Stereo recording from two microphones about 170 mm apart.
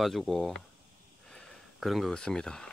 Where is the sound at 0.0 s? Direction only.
Centre (ahead or behind).